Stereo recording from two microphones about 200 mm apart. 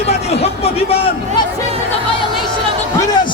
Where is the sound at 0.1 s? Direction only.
30° left (ahead or behind).